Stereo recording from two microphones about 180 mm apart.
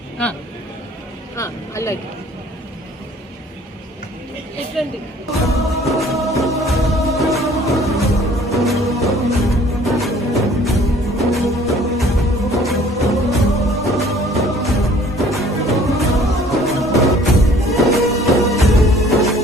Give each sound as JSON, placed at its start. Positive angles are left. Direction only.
{"t": 1.4, "sound": "speech", "side_deg": 15}
{"t": 4.8, "sound": "speech", "side_deg": 0}
{"t": 5.8, "sound": "music", "side_deg": 0}